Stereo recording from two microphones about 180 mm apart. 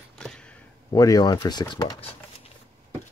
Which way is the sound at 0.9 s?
20° left (ahead or behind).